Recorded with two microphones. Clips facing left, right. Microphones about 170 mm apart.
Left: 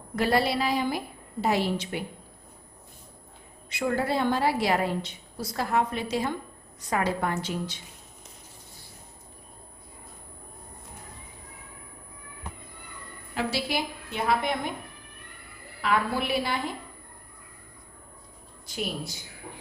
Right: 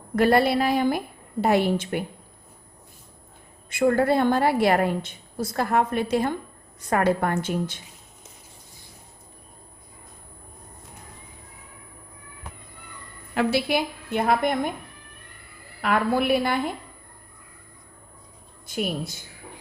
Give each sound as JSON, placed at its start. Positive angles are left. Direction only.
{"t": 0.2, "sound": "a woman's voice", "side_deg": -55}
{"t": 3.7, "sound": "a woman's voice", "side_deg": -50}
{"t": 13.3, "sound": "a woman's voice", "side_deg": -60}
{"t": 15.8, "sound": "a woman's voice", "side_deg": -55}
{"t": 18.7, "sound": "a woman's voice", "side_deg": -55}